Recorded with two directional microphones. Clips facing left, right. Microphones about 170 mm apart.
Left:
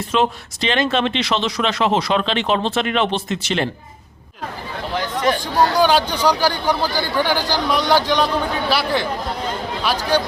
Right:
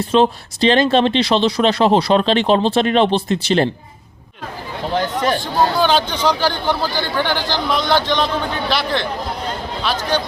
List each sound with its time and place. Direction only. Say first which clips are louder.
0.1 s speech: right 4 dB; 30° right (ahead or behind)
4.9 s chatter: right 1 dB; 35° right (ahead or behind)
5.7 s speech: left 1 dB; 10° left (ahead or behind)